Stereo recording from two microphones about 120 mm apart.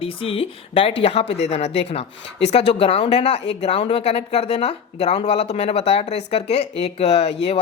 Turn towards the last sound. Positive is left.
turn(degrees=60)  # may be behind; listen again after turning